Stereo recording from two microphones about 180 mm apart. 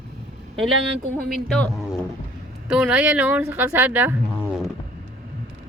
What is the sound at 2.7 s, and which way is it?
Speech, 5° right (ahead or behind).